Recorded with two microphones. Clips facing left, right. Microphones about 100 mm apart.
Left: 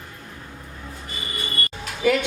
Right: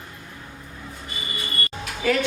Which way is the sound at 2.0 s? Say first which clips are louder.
Left 2 dB; 15° left (ahead or behind).